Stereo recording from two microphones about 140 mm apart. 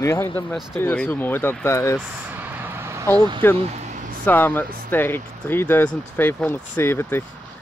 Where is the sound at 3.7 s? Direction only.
55° right (ahead or behind).